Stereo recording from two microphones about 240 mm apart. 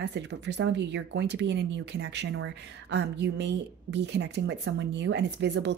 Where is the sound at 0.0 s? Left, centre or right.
Right.